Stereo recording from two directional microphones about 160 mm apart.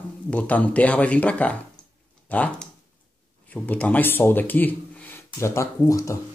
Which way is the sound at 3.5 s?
10° left (ahead or behind).